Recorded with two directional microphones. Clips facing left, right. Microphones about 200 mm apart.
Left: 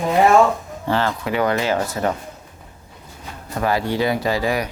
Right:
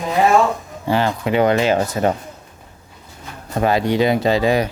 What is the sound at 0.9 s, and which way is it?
Speech, 15° right (ahead or behind).